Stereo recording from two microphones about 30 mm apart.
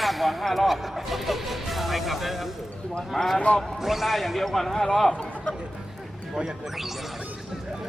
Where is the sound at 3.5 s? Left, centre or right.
Left.